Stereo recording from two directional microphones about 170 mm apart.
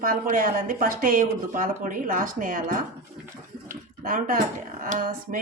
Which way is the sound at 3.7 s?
55° right (ahead or behind).